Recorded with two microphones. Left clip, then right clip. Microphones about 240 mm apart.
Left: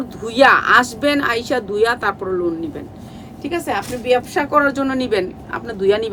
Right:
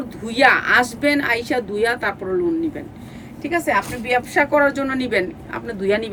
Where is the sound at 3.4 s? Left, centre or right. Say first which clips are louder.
Right 2 dB; centre.